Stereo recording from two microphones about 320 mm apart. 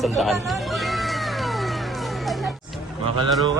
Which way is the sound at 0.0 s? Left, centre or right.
Centre.